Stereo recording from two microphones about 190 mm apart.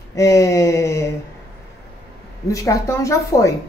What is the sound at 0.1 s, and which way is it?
Speech, 15° left (ahead or behind).